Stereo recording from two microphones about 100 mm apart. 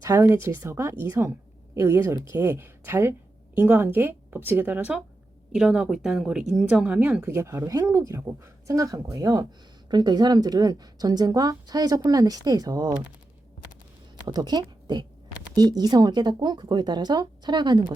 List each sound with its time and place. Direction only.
0.0 s a woman's voice: 30° right (ahead or behind); by 7.2 s 10° right (ahead or behind)
7.2 s a woman's voice: 25° right (ahead or behind)
14.3 s speech: 45° right (ahead or behind)